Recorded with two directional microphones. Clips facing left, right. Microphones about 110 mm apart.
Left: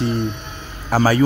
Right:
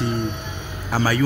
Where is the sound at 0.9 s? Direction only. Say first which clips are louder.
Left 5 dB; 40° left (ahead or behind).